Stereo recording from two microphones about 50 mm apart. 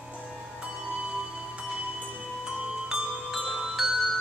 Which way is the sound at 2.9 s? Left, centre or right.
Centre.